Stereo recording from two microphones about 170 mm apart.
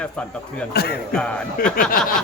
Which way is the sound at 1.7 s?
55° left (ahead or behind).